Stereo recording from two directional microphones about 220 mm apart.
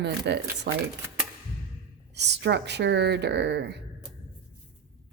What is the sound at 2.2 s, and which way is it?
Speech, 50° right (ahead or behind).